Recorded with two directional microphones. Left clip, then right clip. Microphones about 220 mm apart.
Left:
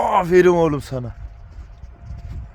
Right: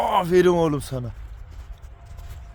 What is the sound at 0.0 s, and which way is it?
Speech, 30° left (ahead or behind).